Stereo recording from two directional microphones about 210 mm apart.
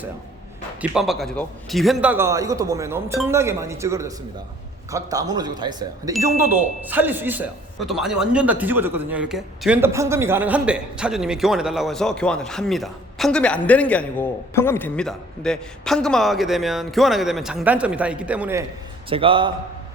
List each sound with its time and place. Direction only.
0.8 s a man's voice: centre (ahead or behind)
19.1 s a man's voice: 25° right (ahead or behind)